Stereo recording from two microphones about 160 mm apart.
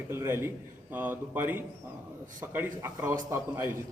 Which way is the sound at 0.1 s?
15° right (ahead or behind).